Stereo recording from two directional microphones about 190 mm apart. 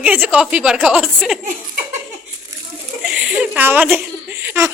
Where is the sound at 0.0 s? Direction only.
10° right (ahead or behind).